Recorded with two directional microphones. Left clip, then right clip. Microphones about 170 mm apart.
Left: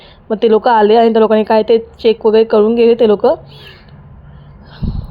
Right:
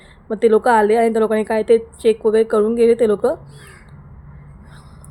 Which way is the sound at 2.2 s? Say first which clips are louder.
Left 8 dB; 5° right (ahead or behind).